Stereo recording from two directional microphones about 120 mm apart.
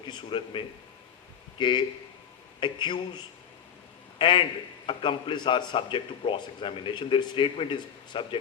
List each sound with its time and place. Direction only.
0.1 s a man's voice: 40° left (ahead or behind)
4.2 s a man's voice: 40° left (ahead or behind)